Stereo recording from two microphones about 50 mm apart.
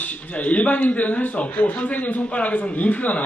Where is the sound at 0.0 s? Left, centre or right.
Left.